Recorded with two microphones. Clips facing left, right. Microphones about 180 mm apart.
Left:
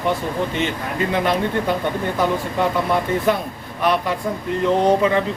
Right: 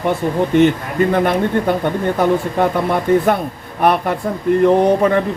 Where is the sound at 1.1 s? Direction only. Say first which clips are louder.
Right 4 dB; 55° right (ahead or behind).